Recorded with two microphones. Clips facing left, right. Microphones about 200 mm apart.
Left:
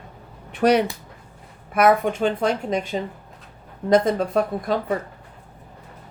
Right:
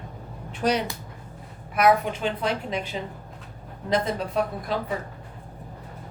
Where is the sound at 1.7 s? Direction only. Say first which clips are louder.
Left 3 dB; 50° left (ahead or behind).